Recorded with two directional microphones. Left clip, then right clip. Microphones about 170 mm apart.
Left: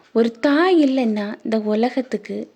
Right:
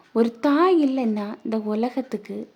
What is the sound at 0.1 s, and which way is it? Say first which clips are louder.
Speech: left 3 dB; 5° left (ahead or behind).